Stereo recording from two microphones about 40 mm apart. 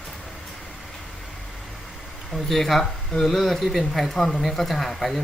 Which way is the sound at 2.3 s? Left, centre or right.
Centre.